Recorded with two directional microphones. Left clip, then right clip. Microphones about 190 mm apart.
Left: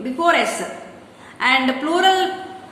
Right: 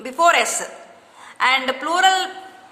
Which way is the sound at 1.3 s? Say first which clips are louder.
Left 1 dB; 40° right (ahead or behind).